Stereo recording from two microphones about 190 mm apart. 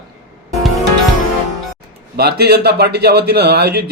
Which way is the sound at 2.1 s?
55° right (ahead or behind).